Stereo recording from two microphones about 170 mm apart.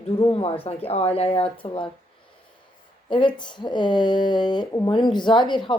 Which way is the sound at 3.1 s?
30° left (ahead or behind).